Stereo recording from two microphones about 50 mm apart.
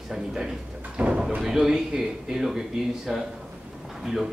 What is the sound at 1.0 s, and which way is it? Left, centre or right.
Speech, right.